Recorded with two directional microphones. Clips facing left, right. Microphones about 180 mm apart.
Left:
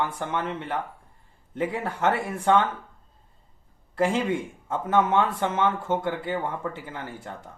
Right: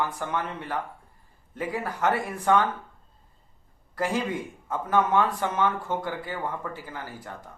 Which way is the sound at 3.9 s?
25° left (ahead or behind).